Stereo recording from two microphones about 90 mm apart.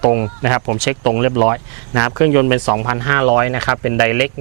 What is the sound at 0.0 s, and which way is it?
Speech, 20° right (ahead or behind).